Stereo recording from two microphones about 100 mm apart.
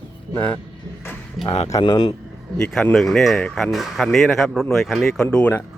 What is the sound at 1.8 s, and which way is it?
Speech, 50° left (ahead or behind).